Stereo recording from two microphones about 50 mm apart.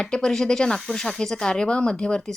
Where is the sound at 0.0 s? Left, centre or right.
Centre.